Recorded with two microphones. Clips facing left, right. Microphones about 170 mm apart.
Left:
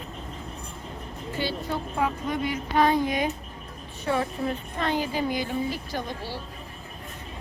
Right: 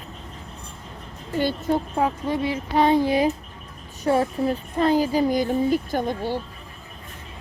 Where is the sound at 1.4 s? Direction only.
45° right (ahead or behind).